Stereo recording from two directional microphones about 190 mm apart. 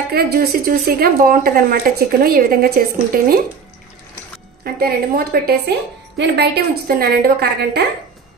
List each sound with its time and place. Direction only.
0.1 s speech: 55° right (ahead or behind)
4.7 s a woman's voice: 55° right (ahead or behind)